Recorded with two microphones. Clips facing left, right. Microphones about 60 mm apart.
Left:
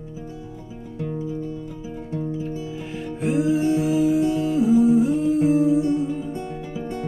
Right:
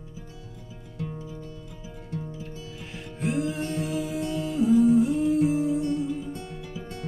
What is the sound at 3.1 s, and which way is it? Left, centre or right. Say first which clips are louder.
Music: left 7 dB; centre.